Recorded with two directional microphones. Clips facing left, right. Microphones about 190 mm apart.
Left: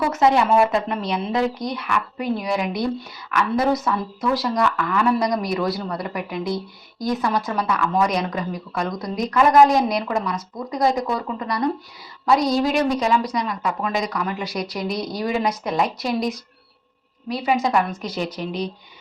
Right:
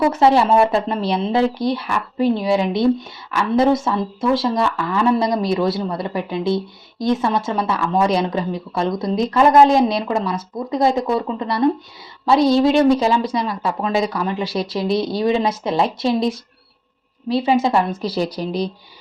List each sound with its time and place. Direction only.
0.1 s a woman's voice: 30° right (ahead or behind)